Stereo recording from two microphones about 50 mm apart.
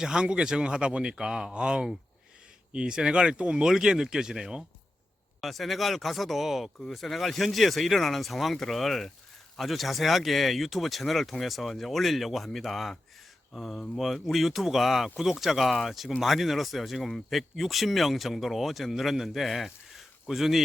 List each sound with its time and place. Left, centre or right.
0.0 s speech: centre
5.4 s speech: centre